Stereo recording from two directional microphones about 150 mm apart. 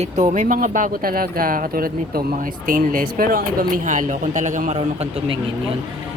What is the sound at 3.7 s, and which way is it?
Speech, 60° right (ahead or behind).